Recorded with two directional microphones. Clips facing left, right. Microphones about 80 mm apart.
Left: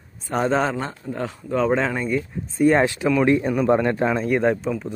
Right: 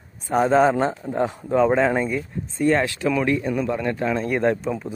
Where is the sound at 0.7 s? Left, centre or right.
Right.